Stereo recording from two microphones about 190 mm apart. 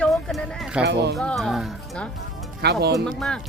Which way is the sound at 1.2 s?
5° left (ahead or behind).